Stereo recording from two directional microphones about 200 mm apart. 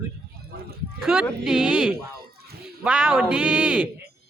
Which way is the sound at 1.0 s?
5° right (ahead or behind).